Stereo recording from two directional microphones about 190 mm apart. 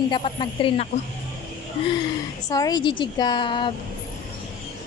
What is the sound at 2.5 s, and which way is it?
A woman's voice, 20° left (ahead or behind).